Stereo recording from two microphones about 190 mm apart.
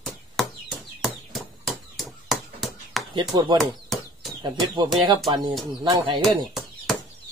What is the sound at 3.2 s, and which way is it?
Speech, 25° right (ahead or behind).